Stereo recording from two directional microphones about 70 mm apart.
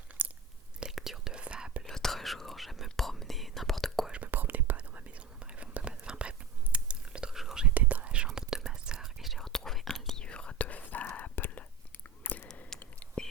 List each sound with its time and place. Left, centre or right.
0.2 s chewing: right
0.8 s whispering: centre
1.8 s whispering: centre
4.1 s whispering: right; by 7.7 s centre
7.7 s whispering: right
8.3 s whispering: centre; by 11.6 s left
12.2 s a sound: left
12.7 s whispering: centre